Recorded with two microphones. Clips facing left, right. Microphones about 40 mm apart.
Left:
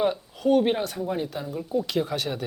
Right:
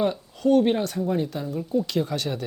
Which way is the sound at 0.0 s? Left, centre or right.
Centre.